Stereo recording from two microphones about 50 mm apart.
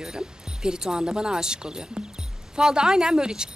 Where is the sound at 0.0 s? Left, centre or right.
Centre.